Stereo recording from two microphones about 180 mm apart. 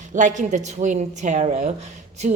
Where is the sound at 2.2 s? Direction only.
40° right (ahead or behind).